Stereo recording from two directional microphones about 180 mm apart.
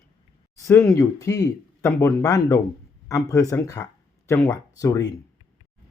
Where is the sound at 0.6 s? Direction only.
15° left (ahead or behind).